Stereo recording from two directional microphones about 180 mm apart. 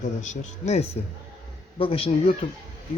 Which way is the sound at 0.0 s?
45° left (ahead or behind).